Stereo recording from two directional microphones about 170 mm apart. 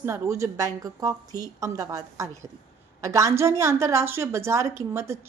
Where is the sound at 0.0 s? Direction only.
15° right (ahead or behind).